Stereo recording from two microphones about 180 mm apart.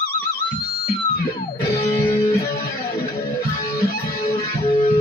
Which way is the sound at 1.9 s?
15° left (ahead or behind).